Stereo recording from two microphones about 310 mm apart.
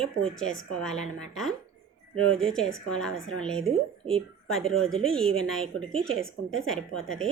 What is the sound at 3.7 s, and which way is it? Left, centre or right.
Speech, centre.